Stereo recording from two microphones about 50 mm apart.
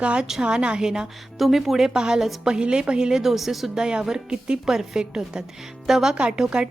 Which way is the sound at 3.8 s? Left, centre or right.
Centre.